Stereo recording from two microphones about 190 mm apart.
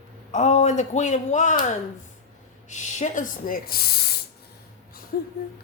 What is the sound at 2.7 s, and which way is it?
Speech, 40° left (ahead or behind).